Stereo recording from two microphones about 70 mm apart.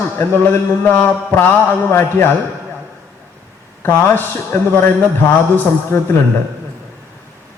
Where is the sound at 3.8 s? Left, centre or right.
Left.